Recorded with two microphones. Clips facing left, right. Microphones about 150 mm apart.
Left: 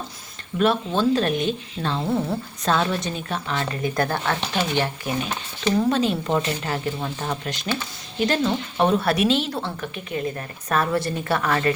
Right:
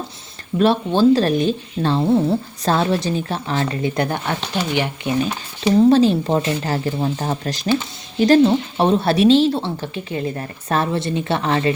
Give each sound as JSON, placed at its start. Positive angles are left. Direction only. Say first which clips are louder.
{"t": 0.6, "sound": "speech", "louder": "right 5 dB", "side_deg": -30}
{"t": 3.8, "sound": "a woman's voice", "louder": "right 2 dB", "side_deg": -20}
{"t": 5.9, "sound": "a woman's voice", "louder": "right 7 dB", "side_deg": -30}